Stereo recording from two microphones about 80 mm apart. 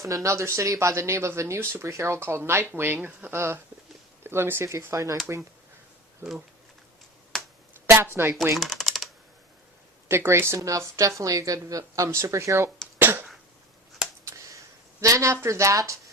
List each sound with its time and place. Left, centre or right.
0.1 s speech: right
3.3 s speech: right
7.3 s finger snapping: centre
8.1 s speech: right
8.5 s typing: centre
10.1 s speech: right
13.0 s cough: right
14.3 s a sound: right
15.0 s speech: right